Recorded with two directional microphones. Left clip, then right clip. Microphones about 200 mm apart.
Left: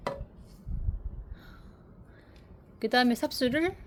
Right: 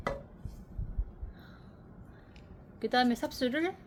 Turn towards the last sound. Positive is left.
turn(degrees=40)  # may be behind; listen again after turning